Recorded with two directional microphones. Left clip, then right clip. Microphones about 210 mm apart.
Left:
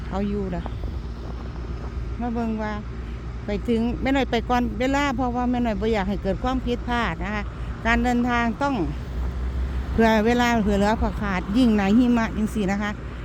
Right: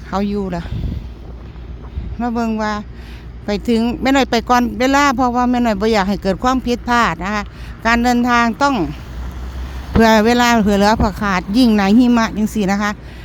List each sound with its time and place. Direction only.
0.1 s speech: 25° right (ahead or behind)
2.2 s speech: 25° right (ahead or behind)
10.0 s speech: 25° right (ahead or behind)